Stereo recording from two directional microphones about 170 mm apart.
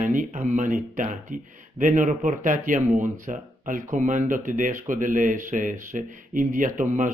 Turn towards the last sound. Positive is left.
turn(degrees=-50)  # may be behind; listen again after turning